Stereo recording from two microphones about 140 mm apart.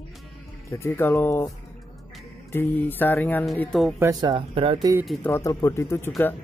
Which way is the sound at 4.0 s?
25° right (ahead or behind).